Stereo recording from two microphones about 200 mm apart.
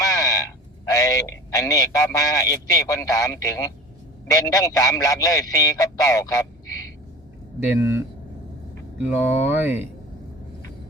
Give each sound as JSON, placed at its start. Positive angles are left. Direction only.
{"t": 0.0, "sound": "a man's voice", "side_deg": 15}
{"t": 7.8, "sound": "speech", "side_deg": -15}